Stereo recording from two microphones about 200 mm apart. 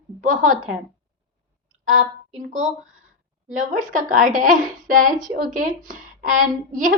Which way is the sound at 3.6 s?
40° right (ahead or behind).